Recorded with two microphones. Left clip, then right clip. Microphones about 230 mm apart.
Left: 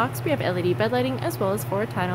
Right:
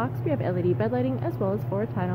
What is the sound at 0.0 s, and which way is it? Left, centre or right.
Speech, centre.